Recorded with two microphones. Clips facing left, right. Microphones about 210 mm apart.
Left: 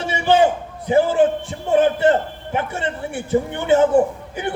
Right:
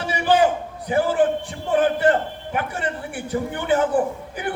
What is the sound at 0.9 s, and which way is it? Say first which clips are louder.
A man's voice: left 4 dB; 25° left (ahead or behind).